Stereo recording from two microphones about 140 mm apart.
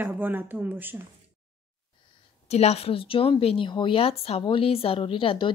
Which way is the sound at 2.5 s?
50° left (ahead or behind).